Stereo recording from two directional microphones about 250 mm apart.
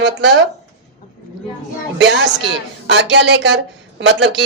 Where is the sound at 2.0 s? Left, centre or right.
Right.